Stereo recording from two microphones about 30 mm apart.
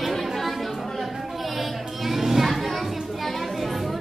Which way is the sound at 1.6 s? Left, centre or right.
Centre.